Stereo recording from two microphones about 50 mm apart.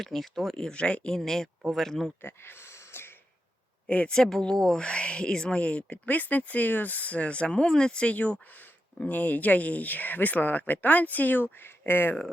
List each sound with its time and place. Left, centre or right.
0.0 s speech: centre
0.6 s speech: centre
1.1 s speech: centre
2.2 s a sound: left
3.8 s speech: left
4.1 s speech: centre
4.8 s speech: left
6.1 s speech: left; by 8.1 s centre
8.1 s speech: left